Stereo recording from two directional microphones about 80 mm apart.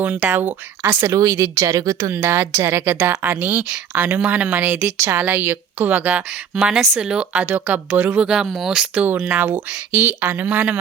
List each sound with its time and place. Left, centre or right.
0.0 s speech: centre; by 2.1 s right
2.1 s a woman's voice: right
4.9 s a woman's voice: right
6.6 s speech: centre
7.0 s speech: centre
8.6 s speech: centre
9.0 s a woman's voice: centre